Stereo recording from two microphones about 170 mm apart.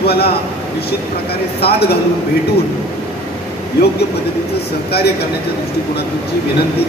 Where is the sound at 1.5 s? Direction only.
70° left (ahead or behind).